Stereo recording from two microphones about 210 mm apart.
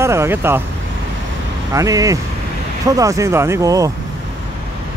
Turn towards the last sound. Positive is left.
turn(degrees=-15)  # may be behind; listen again after turning